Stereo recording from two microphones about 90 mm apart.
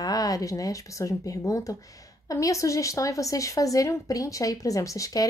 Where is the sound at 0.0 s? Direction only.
45° left (ahead or behind).